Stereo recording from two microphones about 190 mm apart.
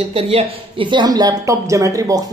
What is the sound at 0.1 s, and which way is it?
Speech, 30° right (ahead or behind).